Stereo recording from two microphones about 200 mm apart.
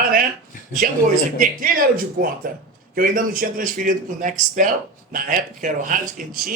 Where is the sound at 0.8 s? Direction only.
45° right (ahead or behind).